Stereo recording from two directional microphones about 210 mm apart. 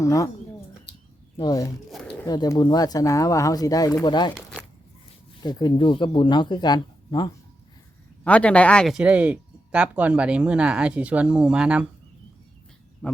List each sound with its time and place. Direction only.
0.0 s speech: 15° left (ahead or behind)
1.4 s speech: 15° left (ahead or behind)
1.9 s a sound: 5° left (ahead or behind)
2.2 s speech: 15° left (ahead or behind)
5.4 s speech: 20° left (ahead or behind)
8.2 s speech: 5° left (ahead or behind)
13.0 s speech: 5° left (ahead or behind)